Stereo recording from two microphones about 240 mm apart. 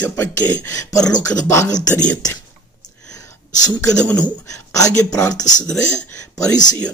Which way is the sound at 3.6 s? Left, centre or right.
Centre.